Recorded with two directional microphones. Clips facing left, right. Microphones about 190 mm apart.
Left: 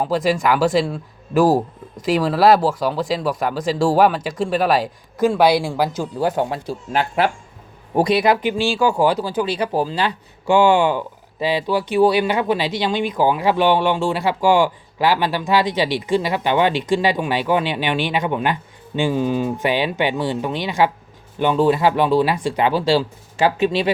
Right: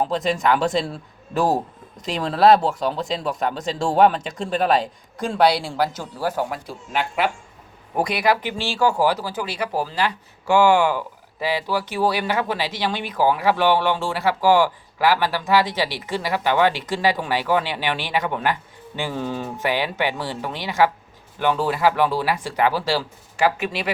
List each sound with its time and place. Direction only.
0.4 s speech: 5° left (ahead or behind)
2.0 s speech: 5° left (ahead or behind); by 23.9 s 25° left (ahead or behind)